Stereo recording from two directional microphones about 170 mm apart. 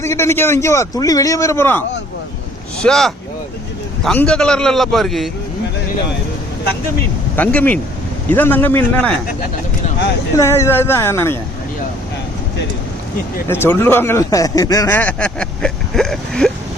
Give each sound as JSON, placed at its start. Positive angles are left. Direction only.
{"t": 0.0, "sound": "speech", "side_deg": 15}
{"t": 2.8, "sound": "a man's voice", "side_deg": 0}
{"t": 7.3, "sound": "speech", "side_deg": 10}
{"t": 10.3, "sound": "speech", "side_deg": 15}
{"t": 13.5, "sound": "speech", "side_deg": 15}